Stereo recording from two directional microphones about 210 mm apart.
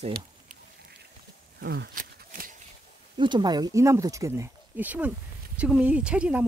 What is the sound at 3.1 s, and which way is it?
Speech, 20° right (ahead or behind).